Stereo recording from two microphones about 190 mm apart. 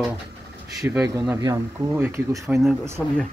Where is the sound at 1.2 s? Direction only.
20° right (ahead or behind).